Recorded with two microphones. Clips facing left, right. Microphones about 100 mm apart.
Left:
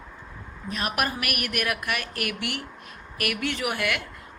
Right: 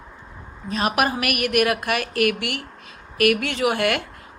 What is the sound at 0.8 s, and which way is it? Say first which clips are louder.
A woman's voice: right 7 dB; 80° right.